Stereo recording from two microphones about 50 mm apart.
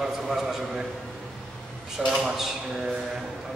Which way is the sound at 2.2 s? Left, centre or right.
Centre.